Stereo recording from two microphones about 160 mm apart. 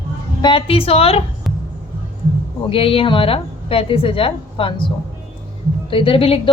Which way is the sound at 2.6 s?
35° left (ahead or behind).